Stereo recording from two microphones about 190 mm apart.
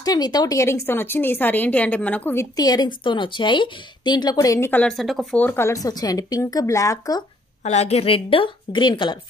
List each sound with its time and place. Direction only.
0.0 s speech: 20° left (ahead or behind)
7.6 s a woman's voice: 35° left (ahead or behind)